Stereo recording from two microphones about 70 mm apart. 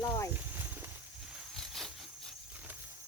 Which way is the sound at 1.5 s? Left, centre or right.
Centre.